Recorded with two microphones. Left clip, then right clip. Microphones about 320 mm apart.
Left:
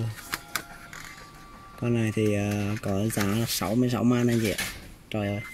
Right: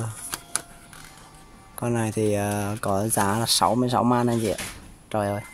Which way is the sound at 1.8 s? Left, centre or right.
Right.